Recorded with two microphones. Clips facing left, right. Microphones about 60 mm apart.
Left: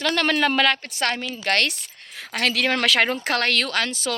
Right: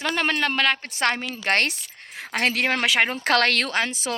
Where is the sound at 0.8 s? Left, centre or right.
Right.